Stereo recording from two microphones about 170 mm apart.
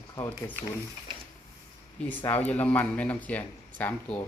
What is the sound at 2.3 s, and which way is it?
Speech, 10° left (ahead or behind).